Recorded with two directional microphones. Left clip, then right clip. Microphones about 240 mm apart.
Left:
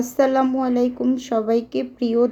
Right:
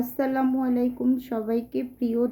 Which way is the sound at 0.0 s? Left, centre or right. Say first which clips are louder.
Left 8 dB; centre.